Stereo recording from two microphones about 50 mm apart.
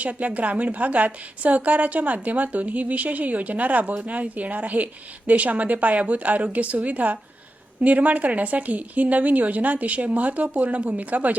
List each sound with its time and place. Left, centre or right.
0.0 s a woman's voice: right